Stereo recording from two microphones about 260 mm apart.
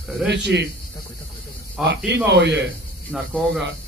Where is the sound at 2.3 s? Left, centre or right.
Right.